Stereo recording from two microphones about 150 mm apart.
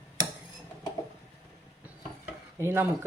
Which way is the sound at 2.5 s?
15° right (ahead or behind).